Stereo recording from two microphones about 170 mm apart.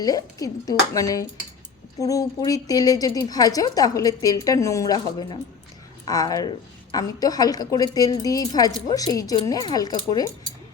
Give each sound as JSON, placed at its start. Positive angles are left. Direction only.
{"t": 0.0, "sound": "a woman's voice", "side_deg": 20}